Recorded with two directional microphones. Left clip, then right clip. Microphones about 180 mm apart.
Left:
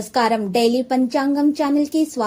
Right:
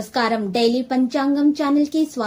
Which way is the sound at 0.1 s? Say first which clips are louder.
Left 3 dB; 30° left (ahead or behind).